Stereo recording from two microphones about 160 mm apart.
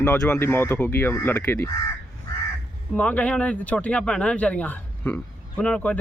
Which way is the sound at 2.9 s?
10° left (ahead or behind).